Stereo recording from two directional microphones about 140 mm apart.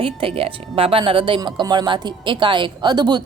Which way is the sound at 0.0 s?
40° right (ahead or behind).